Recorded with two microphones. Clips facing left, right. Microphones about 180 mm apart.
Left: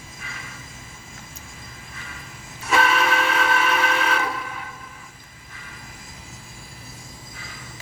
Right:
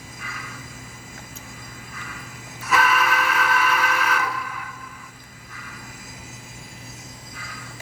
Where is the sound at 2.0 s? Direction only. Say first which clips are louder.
Right 2 dB; 25° left (ahead or behind).